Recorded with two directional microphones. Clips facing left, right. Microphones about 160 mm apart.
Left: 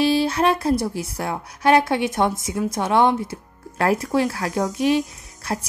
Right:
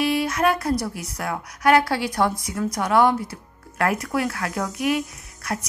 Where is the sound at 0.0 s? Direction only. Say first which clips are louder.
Left 3 dB; 30° left (ahead or behind).